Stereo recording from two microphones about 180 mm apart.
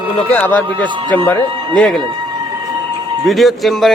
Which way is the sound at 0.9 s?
25° right (ahead or behind).